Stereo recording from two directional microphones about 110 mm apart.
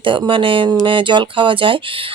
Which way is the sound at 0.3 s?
50° right (ahead or behind).